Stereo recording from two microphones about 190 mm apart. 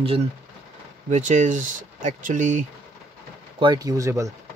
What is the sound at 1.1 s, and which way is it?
Speech, 40° right (ahead or behind).